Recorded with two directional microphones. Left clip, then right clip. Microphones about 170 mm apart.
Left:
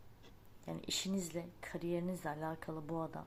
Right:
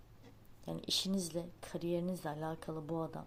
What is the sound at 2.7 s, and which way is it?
Speech, 15° right (ahead or behind).